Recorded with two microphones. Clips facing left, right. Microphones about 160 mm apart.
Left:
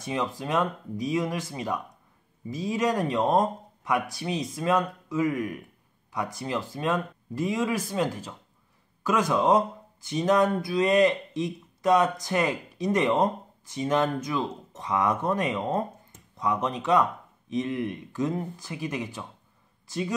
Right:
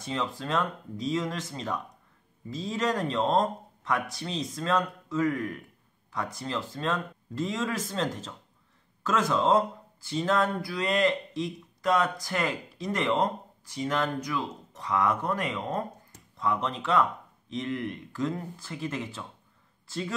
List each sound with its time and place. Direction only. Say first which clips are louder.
0.0 s speech: left 2 dB; 15° left (ahead or behind)